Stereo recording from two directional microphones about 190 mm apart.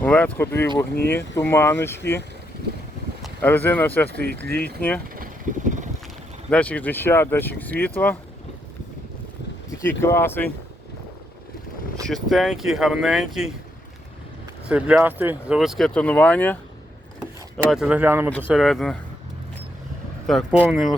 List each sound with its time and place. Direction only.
0.0 s speech: 10° left (ahead or behind)
3.2 s speech: 10° left (ahead or behind)
4.1 s speech: 60° right (ahead or behind)
5.1 s vehicle: 45° right (ahead or behind)
6.5 s speech: 5° left (ahead or behind)
9.8 s speech: 15° left (ahead or behind)
12.0 s speech: centre (ahead or behind)
14.7 s speech: 5° right (ahead or behind)
17.7 s speech: 5° right (ahead or behind)
18.3 s speech: 5° left (ahead or behind)
20.2 s speech: 5° right (ahead or behind)